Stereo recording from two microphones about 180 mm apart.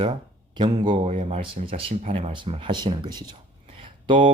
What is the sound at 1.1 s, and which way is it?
Speech, 40° right (ahead or behind).